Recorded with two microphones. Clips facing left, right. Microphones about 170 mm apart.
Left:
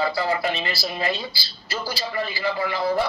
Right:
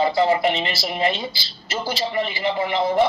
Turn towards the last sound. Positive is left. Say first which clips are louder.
# right 3 dB
turn(degrees=-20)  # may be behind; listen again after turning